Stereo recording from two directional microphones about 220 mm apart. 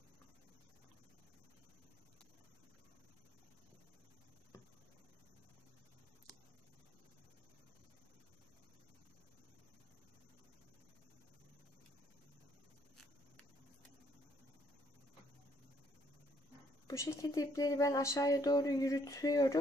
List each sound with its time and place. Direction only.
16.8 s speech: 15° left (ahead or behind)